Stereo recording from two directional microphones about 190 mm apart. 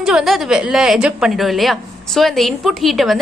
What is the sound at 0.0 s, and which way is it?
A woman's voice, centre (ahead or behind).